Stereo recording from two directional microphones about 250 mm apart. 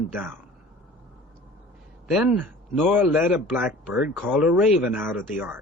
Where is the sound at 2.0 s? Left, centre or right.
Centre.